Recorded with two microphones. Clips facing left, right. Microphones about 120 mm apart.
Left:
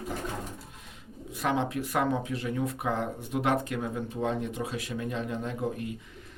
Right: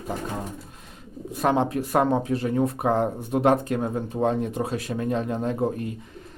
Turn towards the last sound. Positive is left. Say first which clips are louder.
# right 7 dB
turn(degrees=-40)  # may be behind; listen again after turning